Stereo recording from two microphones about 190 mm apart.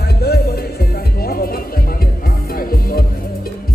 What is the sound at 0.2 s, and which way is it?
Music, 55° left (ahead or behind).